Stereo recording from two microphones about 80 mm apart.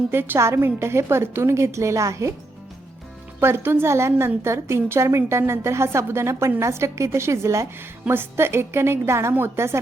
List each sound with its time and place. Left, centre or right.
0.1 s a woman's voice: right
3.4 s a woman's voice: right
8.0 s a woman's voice: right